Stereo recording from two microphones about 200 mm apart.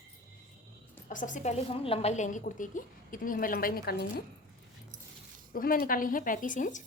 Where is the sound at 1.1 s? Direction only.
40° left (ahead or behind).